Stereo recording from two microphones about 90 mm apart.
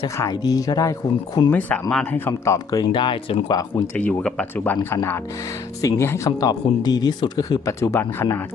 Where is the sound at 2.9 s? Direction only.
65° left (ahead or behind).